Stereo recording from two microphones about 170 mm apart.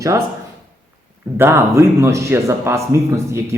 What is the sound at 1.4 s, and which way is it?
A man's voice, 15° right (ahead or behind).